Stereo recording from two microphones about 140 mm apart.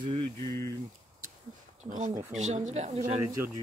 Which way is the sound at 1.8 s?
60° right (ahead or behind).